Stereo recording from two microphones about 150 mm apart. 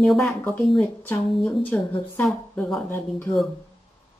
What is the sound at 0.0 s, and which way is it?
Speech, centre (ahead or behind).